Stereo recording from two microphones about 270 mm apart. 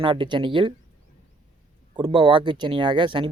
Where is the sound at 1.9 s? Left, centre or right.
Centre.